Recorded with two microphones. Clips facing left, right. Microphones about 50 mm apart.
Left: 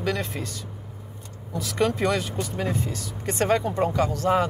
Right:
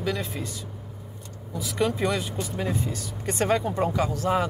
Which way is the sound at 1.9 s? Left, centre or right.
Left.